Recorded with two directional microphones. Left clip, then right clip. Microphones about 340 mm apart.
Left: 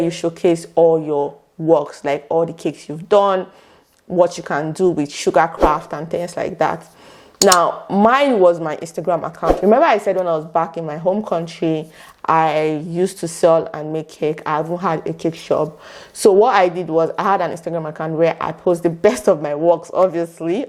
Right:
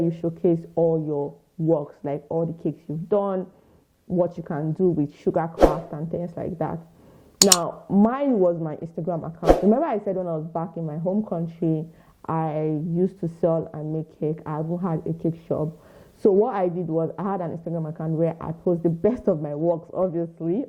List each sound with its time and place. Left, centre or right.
0.0 s speech: centre
0.8 s speech: centre
2.0 s a woman's voice: centre